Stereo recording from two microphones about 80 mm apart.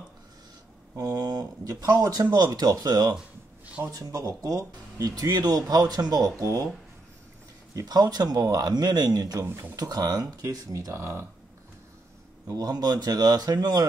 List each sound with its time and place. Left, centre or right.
0.9 s speech: right
3.6 s a sound: centre
3.9 s speech: right
7.7 s speech: right
9.4 s speech: right
9.8 s speech: right
10.4 s speech: right
12.4 s speech: right